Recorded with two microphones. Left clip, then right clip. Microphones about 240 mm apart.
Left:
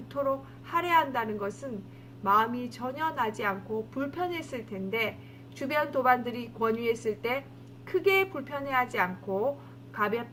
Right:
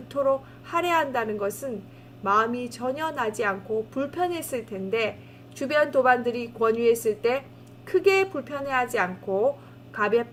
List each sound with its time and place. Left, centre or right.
0.7 s a woman's voice: right